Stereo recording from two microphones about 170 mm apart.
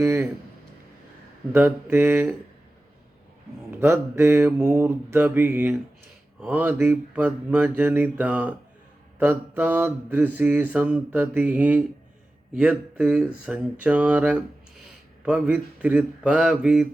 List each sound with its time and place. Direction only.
0.0 s speech: 15° right (ahead or behind)
1.5 s mantra: 10° right (ahead or behind)
3.7 s mantra: 15° right (ahead or behind)